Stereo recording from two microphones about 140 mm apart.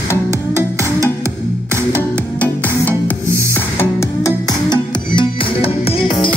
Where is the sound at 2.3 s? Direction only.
10° left (ahead or behind).